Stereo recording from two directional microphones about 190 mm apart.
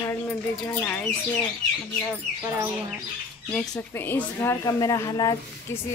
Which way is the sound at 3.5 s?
5° left (ahead or behind).